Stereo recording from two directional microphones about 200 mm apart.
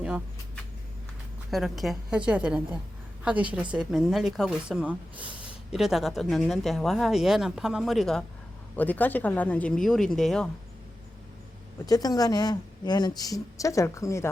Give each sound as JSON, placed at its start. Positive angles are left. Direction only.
{"t": 0.0, "sound": "speech", "side_deg": -5}
{"t": 11.9, "sound": "a woman's voice", "side_deg": 20}